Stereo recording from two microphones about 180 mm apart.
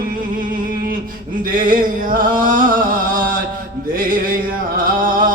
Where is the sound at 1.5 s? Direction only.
50° right (ahead or behind).